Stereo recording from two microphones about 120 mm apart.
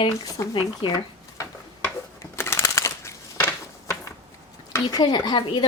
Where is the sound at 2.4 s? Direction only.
20° left (ahead or behind).